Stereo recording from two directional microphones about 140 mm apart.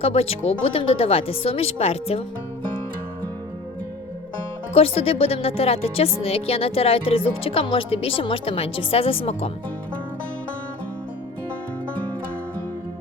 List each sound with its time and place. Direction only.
0.0 s a woman's voice: 45° left (ahead or behind)
4.7 s a woman's voice: 45° left (ahead or behind)